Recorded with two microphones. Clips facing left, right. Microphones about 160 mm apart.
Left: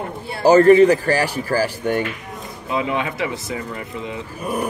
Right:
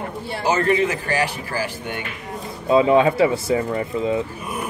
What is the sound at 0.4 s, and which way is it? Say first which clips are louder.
Speech: left 9 dB; 35° left (ahead or behind).